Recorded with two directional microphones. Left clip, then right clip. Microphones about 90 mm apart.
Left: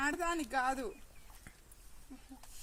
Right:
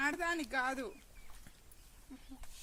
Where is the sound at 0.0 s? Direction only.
50° right (ahead or behind).